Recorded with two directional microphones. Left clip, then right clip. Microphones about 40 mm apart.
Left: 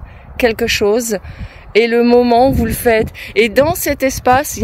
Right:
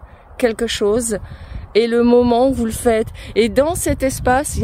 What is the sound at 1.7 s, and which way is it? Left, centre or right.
Speech, right.